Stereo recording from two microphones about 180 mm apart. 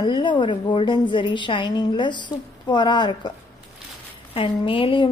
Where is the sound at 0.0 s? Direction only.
25° left (ahead or behind).